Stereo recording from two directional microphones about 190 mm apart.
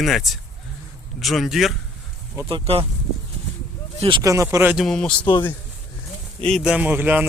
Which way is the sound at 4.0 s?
25° right (ahead or behind).